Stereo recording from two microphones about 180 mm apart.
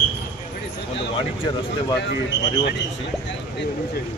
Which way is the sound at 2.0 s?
70° left (ahead or behind).